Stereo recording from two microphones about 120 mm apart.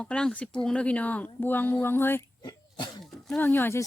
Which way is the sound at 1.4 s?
15° left (ahead or behind).